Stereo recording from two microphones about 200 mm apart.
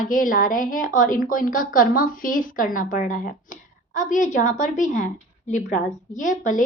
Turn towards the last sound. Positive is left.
turn(degrees=40)  # may be behind; listen again after turning